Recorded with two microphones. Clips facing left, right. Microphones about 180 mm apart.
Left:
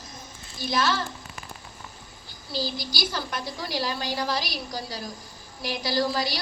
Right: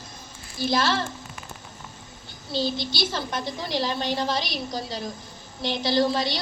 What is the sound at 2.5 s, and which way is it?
A woman's voice, 25° right (ahead or behind).